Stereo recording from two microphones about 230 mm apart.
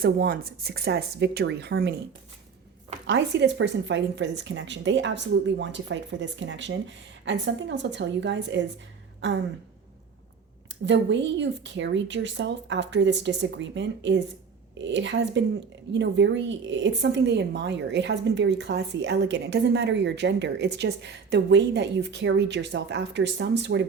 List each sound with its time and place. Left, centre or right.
0.0 s a woman's voice: right
3.1 s a woman's voice: right
10.8 s a woman's voice: right